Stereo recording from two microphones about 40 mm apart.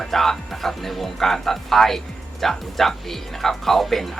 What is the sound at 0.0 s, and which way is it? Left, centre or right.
Speech, centre.